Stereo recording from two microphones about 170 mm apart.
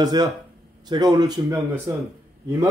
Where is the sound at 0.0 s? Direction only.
25° right (ahead or behind).